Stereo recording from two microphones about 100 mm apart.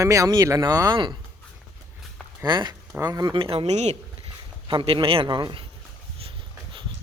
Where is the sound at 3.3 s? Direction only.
70° right (ahead or behind); by 3.9 s 90° right.